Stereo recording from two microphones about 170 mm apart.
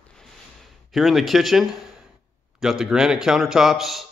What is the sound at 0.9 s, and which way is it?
A man's voice, centre (ahead or behind).